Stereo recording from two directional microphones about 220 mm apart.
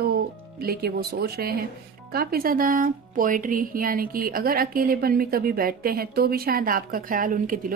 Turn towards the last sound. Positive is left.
turn(degrees=-40)  # may be behind; listen again after turning